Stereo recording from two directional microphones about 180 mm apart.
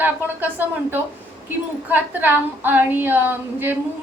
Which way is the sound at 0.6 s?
10° right (ahead or behind).